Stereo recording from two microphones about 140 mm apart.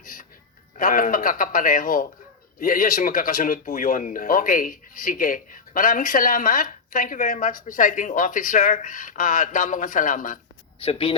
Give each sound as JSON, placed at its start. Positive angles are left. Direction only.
{"t": 0.0, "sound": "music", "side_deg": 75}
{"t": 0.8, "sound": "speech", "side_deg": 75}
{"t": 10.8, "sound": "speech", "side_deg": 40}